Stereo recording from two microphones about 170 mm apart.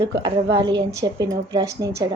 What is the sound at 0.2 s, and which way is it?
A woman's voice, 30° right (ahead or behind).